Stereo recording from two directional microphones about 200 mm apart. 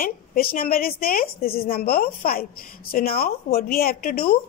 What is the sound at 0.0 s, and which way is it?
A woman's voice, 45° left (ahead or behind).